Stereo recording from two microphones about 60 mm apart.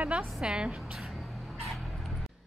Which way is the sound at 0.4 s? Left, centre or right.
Centre.